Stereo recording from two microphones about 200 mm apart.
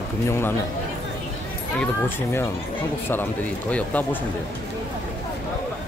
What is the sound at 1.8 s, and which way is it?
Speech, 10° left (ahead or behind).